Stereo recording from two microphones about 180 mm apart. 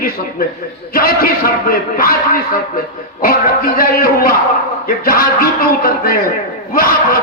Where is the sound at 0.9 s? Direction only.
55° left (ahead or behind).